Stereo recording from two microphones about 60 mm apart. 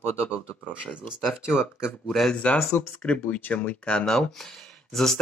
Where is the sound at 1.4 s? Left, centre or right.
Centre.